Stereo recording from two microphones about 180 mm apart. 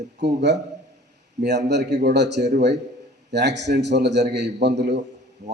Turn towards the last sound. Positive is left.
turn(degrees=-70)  # may be behind; listen again after turning